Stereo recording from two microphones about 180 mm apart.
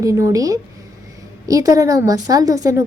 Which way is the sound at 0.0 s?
15° right (ahead or behind).